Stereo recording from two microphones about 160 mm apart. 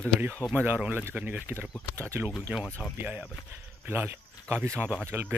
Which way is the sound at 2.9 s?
10° right (ahead or behind).